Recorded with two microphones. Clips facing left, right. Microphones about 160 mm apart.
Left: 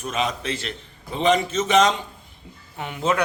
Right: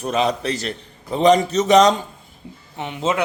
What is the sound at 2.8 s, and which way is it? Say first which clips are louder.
Speech: right 1 dB; 20° right (ahead or behind).